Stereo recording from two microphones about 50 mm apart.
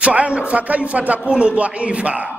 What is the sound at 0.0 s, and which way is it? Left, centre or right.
A man's voice, right.